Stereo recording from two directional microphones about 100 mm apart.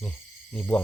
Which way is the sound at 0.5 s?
15° left (ahead or behind).